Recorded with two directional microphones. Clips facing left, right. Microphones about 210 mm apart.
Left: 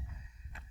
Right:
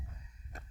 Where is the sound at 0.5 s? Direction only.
45° right (ahead or behind).